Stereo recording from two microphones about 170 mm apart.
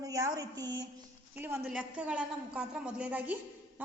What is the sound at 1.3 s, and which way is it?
A woman's voice, 10° right (ahead or behind).